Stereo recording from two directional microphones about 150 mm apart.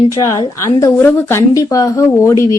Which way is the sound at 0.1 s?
20° left (ahead or behind).